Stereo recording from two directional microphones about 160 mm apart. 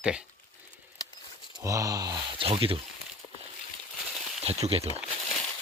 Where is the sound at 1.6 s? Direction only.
20° right (ahead or behind).